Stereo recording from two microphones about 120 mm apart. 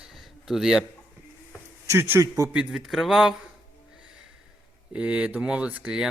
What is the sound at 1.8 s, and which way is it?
Speech, 20° right (ahead or behind).